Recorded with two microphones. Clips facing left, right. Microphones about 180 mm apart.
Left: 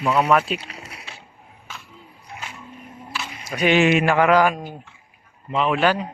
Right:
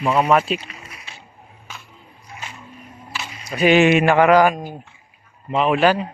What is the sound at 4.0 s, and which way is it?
Speech, 60° right (ahead or behind).